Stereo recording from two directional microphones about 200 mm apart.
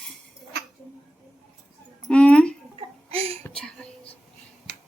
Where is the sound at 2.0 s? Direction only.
5° left (ahead or behind).